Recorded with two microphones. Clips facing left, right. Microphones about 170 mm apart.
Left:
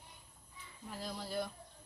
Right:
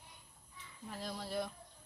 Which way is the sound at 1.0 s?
Centre (ahead or behind).